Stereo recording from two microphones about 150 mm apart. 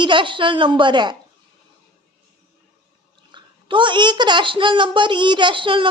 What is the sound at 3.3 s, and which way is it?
A child's voice, 30° right (ahead or behind).